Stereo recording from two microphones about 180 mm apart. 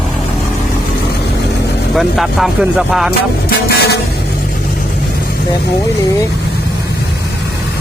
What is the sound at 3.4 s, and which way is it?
Vehicle, 60° left (ahead or behind).